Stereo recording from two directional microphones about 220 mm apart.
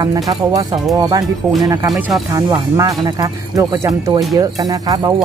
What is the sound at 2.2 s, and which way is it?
Speech, 15° right (ahead or behind).